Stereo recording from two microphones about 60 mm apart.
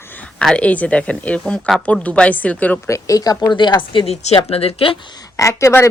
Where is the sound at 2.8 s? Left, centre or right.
Left.